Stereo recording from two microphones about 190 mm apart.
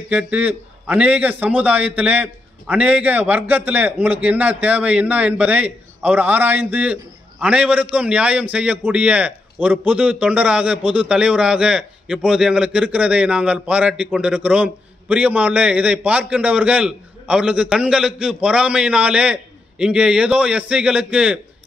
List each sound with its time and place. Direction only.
0.1 s a man's voice: 5° right (ahead or behind)